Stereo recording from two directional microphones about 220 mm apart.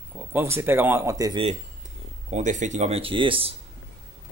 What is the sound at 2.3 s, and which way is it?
A man's voice, 35° right (ahead or behind).